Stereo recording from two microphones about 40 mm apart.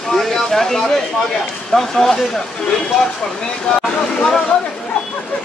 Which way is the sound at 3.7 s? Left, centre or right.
Left.